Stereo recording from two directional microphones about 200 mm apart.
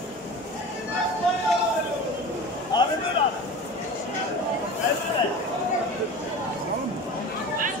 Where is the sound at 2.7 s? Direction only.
20° left (ahead or behind).